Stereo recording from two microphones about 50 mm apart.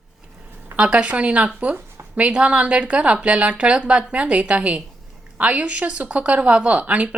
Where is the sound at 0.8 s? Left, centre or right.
Right.